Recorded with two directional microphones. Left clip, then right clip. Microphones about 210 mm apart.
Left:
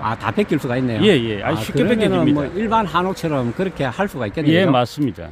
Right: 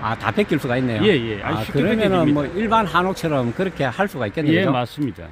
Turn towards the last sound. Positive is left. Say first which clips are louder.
# left 3 dB
turn(degrees=45)  # may be behind; listen again after turning